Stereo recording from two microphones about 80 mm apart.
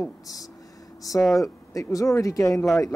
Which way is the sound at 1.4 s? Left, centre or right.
Left.